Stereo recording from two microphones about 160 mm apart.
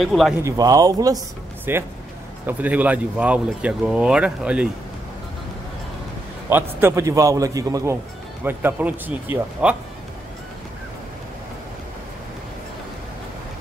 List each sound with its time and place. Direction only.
0.0 s speech: centre (ahead or behind)
0.4 s a man's voice: 20° right (ahead or behind)
6.5 s a man's voice: 15° right (ahead or behind)